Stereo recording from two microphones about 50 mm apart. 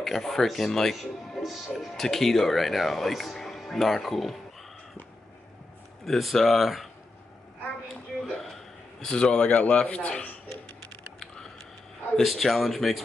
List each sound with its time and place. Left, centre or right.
0.0 s speech: centre
6.0 s speech: centre
7.9 s a sound: centre
9.0 s speech: centre
11.1 s a sound: centre
12.2 s speech: centre